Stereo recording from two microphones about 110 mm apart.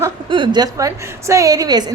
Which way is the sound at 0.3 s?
45° right (ahead or behind).